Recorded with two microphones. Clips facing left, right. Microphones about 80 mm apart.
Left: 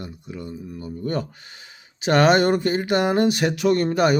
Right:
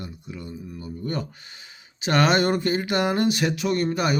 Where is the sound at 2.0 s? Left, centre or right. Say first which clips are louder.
Left 4 dB; left.